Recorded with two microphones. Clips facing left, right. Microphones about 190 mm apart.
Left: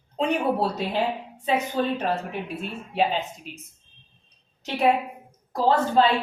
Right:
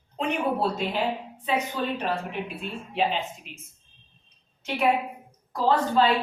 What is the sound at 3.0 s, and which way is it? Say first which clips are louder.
Speech: left 2 dB; 40° left (ahead or behind).